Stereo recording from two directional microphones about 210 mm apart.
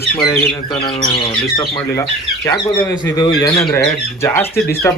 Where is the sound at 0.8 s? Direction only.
25° left (ahead or behind).